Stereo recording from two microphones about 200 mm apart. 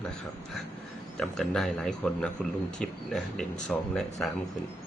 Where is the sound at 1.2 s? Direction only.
Centre (ahead or behind).